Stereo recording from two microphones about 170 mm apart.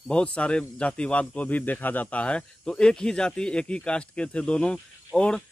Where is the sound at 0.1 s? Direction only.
5° left (ahead or behind).